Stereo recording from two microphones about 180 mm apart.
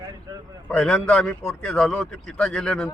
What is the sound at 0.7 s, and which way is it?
A man's voice, 5° left (ahead or behind).